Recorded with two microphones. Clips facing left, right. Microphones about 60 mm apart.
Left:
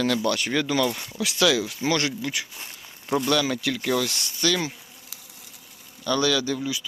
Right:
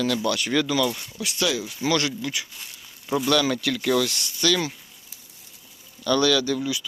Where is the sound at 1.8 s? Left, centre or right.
Left.